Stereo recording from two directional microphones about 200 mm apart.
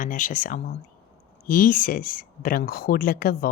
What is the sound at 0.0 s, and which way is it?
A woman's voice, 40° left (ahead or behind).